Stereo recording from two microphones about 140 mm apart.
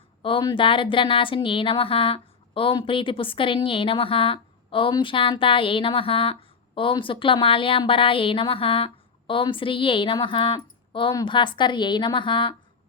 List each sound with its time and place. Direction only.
0.2 s speech: 40° left (ahead or behind)